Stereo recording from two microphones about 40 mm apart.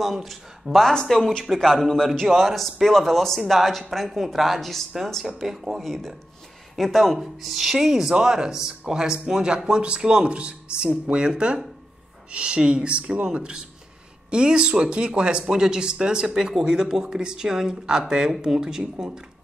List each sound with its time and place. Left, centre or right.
0.0 s speech: centre
4.6 s speech: centre
5.4 s speech: centre
5.8 s speech: centre